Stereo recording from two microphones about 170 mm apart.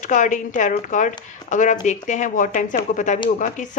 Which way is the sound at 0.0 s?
45° left (ahead or behind).